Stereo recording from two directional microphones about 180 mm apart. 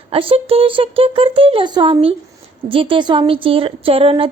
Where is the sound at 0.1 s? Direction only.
30° right (ahead or behind).